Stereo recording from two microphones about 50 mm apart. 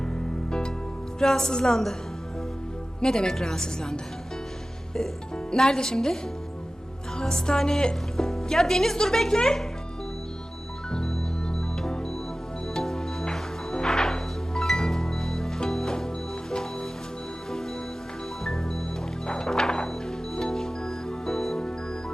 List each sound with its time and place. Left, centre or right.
0.0 s music: centre
1.2 s a woman's voice: centre
3.0 s a woman's voice: centre
5.5 s a woman's voice: centre
10.9 s music: centre
18.4 s music: centre